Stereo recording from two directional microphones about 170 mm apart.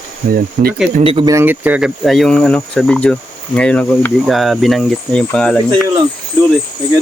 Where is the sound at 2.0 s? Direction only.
Centre (ahead or behind).